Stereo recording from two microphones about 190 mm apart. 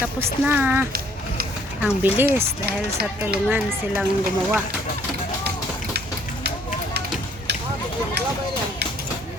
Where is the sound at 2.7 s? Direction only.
55° right (ahead or behind).